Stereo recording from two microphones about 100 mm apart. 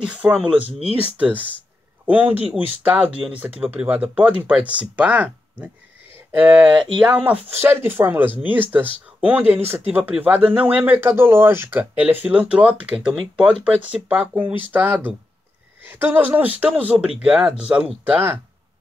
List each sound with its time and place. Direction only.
0.0 s speech: 10° right (ahead or behind)
6.1 s a sound: 20° right (ahead or behind)
7.0 s speech: 15° right (ahead or behind)